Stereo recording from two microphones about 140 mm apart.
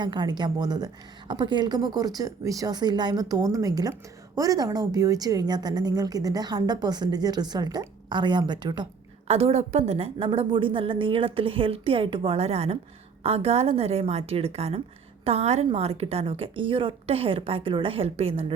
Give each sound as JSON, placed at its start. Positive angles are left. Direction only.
{"t": 0.0, "sound": "a woman's voice", "side_deg": -30}
{"t": 9.2, "sound": "a woman's voice", "side_deg": -45}